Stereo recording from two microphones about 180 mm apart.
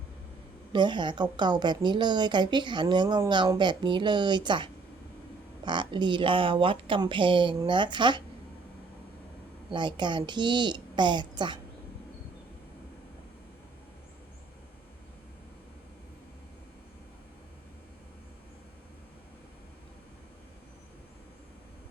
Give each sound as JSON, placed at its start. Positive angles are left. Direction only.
{"t": 0.7, "sound": "a woman's voice", "side_deg": -25}
{"t": 9.7, "sound": "a woman's voice", "side_deg": -25}